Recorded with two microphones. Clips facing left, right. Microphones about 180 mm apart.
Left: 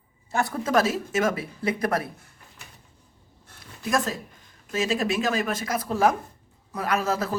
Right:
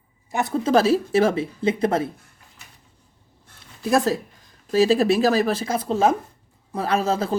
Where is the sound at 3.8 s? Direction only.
35° right (ahead or behind).